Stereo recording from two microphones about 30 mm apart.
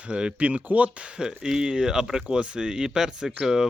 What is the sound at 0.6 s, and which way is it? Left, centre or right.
Speech, right.